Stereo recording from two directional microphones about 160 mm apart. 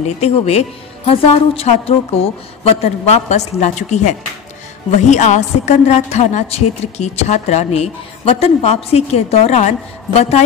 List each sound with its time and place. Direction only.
0.0 s a woman's voice: 40° left (ahead or behind)